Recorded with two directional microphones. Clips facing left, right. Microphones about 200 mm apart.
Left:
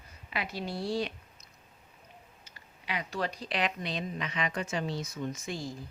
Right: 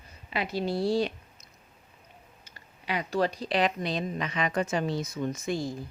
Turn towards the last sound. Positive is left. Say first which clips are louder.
# right 6 dB
turn(degrees=-50)  # may be behind; listen again after turning